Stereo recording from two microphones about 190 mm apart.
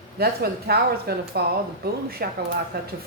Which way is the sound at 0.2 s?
55° right (ahead or behind).